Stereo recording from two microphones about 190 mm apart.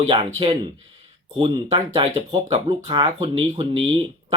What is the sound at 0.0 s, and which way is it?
Speech, 30° right (ahead or behind).